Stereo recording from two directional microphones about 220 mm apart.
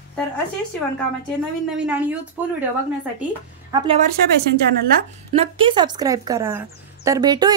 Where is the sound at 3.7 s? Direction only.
20° right (ahead or behind).